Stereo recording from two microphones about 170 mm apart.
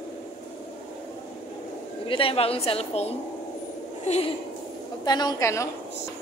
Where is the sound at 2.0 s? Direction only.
30° left (ahead or behind).